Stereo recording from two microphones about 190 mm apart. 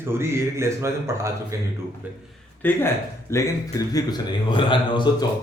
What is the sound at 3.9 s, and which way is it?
Speech, 25° left (ahead or behind).